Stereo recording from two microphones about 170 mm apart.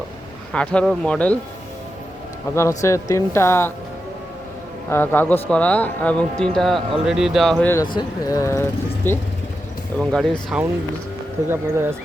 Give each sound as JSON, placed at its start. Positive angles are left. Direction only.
{"t": 0.5, "sound": "speech", "side_deg": 5}
{"t": 2.6, "sound": "speech", "side_deg": 15}
{"t": 4.9, "sound": "speech", "side_deg": 10}
{"t": 7.9, "sound": "speech", "side_deg": 20}
{"t": 11.4, "sound": "speech", "side_deg": -15}